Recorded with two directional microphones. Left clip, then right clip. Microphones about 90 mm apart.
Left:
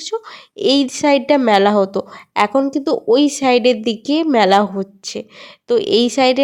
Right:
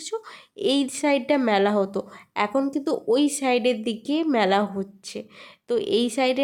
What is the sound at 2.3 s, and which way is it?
Speech, 25° left (ahead or behind).